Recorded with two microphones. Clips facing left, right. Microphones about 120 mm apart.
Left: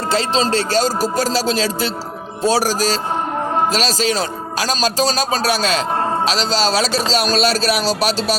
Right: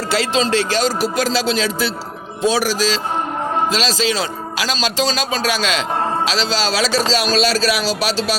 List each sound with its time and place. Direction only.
0.1 s speech: 35° left (ahead or behind)